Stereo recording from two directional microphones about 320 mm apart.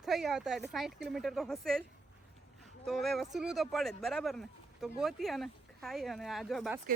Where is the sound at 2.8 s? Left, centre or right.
Centre.